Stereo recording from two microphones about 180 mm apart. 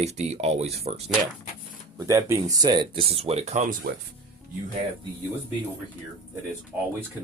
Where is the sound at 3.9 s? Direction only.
55° right (ahead or behind).